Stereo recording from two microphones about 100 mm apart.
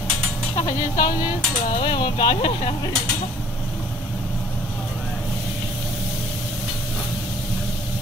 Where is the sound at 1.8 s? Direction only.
50° left (ahead or behind).